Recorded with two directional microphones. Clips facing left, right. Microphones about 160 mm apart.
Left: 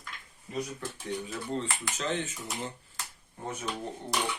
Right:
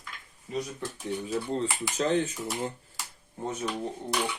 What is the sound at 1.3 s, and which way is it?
Speech, 35° right (ahead or behind).